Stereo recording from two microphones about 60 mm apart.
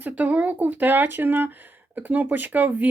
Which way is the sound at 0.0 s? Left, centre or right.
Right.